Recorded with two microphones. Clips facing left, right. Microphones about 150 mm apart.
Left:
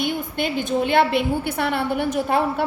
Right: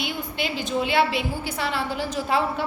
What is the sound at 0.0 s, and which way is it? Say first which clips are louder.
A woman's voice: left 5 dB; 50° left (ahead or behind).